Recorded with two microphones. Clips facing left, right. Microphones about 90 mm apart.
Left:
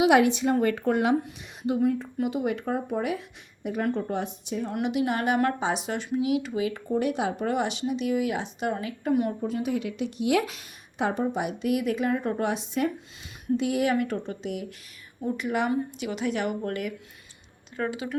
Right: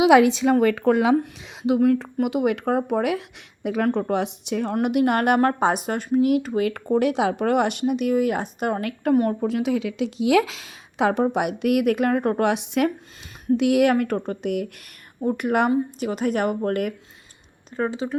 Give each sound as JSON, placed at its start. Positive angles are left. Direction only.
{"t": 0.3, "sound": "a woman's voice", "side_deg": -90}
{"t": 4.7, "sound": "speech", "side_deg": -55}
{"t": 5.4, "sound": "speech", "side_deg": -50}
{"t": 9.4, "sound": "a woman's voice", "side_deg": -90}
{"t": 13.9, "sound": "speech", "side_deg": -55}
{"t": 16.0, "sound": "speech", "side_deg": -45}
{"t": 17.7, "sound": "speech", "side_deg": -30}